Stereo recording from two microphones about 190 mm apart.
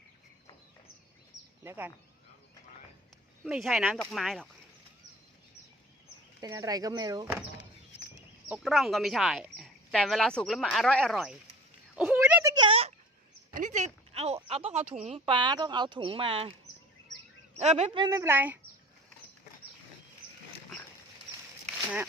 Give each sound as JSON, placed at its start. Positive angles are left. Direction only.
{"t": 1.6, "sound": "a woman's voice", "side_deg": -10}
{"t": 3.4, "sound": "speech", "side_deg": 0}
{"t": 6.4, "sound": "speech", "side_deg": -20}
{"t": 8.4, "sound": "speech", "side_deg": -5}
{"t": 11.9, "sound": "a sound", "side_deg": -5}
{"t": 13.6, "sound": "a sound", "side_deg": -40}
{"t": 14.4, "sound": "speech", "side_deg": -30}
{"t": 15.3, "sound": "speech", "side_deg": -25}
{"t": 17.6, "sound": "speech", "side_deg": -35}
{"t": 18.0, "sound": "a woman's voice", "side_deg": -15}